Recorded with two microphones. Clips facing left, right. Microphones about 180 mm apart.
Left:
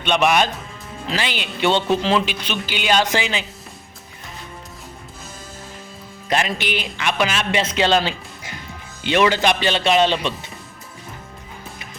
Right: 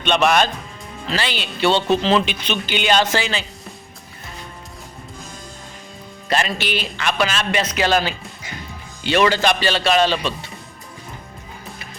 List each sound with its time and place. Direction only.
0.0 s speech: 10° left (ahead or behind)
6.2 s speech: 15° left (ahead or behind)
7.6 s speech: 25° left (ahead or behind)